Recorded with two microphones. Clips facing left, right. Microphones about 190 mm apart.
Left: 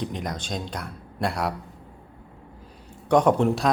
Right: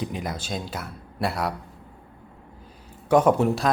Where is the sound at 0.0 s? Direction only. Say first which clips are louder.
Even; 5° right (ahead or behind).